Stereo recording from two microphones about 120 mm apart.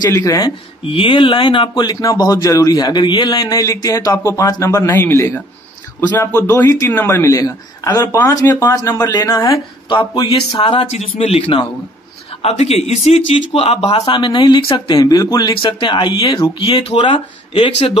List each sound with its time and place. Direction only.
0.1 s speech: 30° left (ahead or behind)
0.8 s speech: 45° left (ahead or behind)
10.9 s speech: 65° left (ahead or behind)
14.0 s speech: 45° left (ahead or behind)
15.0 s speech: 30° left (ahead or behind)
15.5 s speech: 45° left (ahead or behind)